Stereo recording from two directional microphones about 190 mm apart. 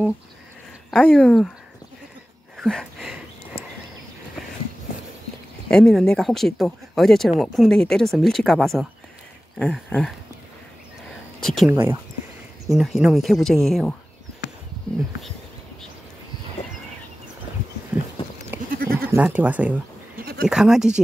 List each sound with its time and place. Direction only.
0.9 s speech: 5° left (ahead or behind)
2.5 s a sound: centre (ahead or behind)
5.7 s speech: 5° left (ahead or behind)
11.4 s speech: centre (ahead or behind)
11.7 s speech: 15° right (ahead or behind)
12.6 s speech: centre (ahead or behind)
17.9 s a sound: 5° right (ahead or behind)
18.7 s goat: 50° right (ahead or behind)
19.0 s speech: 10° right (ahead or behind)